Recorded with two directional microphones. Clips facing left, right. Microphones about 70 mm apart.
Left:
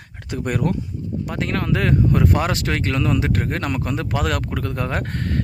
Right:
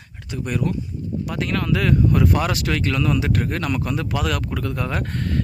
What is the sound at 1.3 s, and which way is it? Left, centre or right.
Speech, left.